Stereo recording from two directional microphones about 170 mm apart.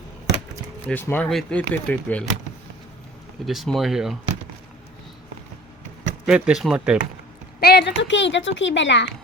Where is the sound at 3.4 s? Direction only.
Centre (ahead or behind).